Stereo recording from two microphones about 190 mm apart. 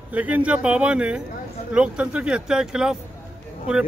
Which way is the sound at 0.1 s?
10° right (ahead or behind).